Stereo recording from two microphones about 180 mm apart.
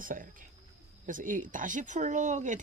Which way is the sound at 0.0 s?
50° right (ahead or behind).